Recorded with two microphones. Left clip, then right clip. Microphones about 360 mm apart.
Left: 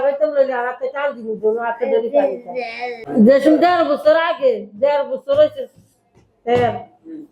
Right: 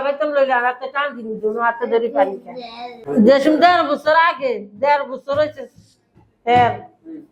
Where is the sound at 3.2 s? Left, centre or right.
Right.